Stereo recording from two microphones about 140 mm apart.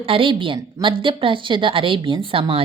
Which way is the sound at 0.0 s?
40° right (ahead or behind).